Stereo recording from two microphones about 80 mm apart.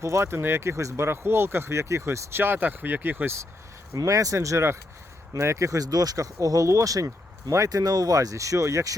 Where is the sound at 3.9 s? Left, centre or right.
Right.